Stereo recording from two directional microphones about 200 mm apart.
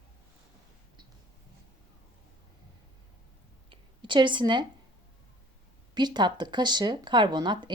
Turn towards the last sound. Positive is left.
turn(degrees=-20)  # may be behind; listen again after turning